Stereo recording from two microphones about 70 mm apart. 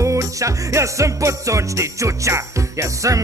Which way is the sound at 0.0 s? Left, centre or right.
Right.